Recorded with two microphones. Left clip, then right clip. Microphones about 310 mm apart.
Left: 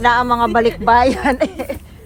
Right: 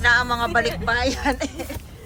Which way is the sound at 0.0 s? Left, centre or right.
Centre.